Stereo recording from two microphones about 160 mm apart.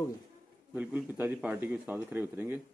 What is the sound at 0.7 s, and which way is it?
Speech, 10° right (ahead or behind).